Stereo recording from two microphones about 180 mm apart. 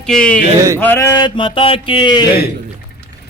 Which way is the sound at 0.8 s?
15° left (ahead or behind).